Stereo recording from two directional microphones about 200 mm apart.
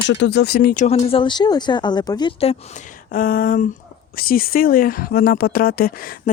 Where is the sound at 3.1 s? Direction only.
45° left (ahead or behind).